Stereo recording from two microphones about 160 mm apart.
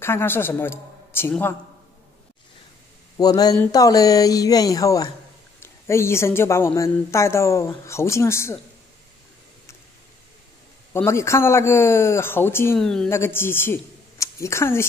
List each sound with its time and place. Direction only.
0.0 s a woman's voice: 15° left (ahead or behind)
3.2 s a woman's voice: 25° left (ahead or behind)
10.9 s a woman's voice: 15° left (ahead or behind)
12.7 s speech: 5° left (ahead or behind)
13.1 s a man's voice: 15° left (ahead or behind)